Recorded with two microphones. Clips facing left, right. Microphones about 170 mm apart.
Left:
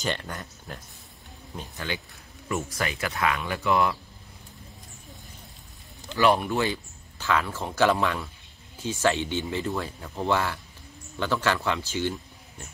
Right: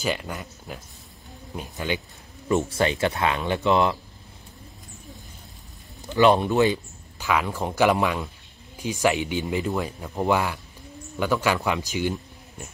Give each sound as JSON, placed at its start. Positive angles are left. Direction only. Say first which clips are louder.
{"t": 0.0, "sound": "speech", "louder": "right 3 dB", "side_deg": -5}
{"t": 2.7, "sound": "speech", "louder": "right 7 dB", "side_deg": -30}
{"t": 6.1, "sound": "speech", "louder": "right 4 dB", "side_deg": -20}